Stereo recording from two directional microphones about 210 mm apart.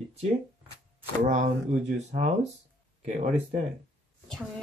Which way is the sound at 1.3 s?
35° right (ahead or behind).